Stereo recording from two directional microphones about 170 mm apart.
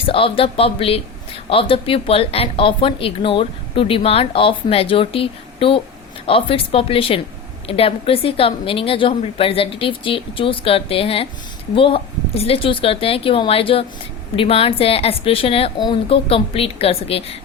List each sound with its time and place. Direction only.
0.0 s speech: 30° left (ahead or behind)